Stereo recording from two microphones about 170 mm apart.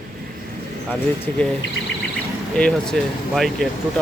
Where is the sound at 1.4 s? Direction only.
5° left (ahead or behind).